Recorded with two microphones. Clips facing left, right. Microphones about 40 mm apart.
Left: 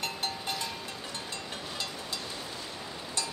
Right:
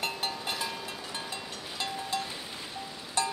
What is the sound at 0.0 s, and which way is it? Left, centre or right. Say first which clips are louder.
Vehicle: right 1 dB; centre.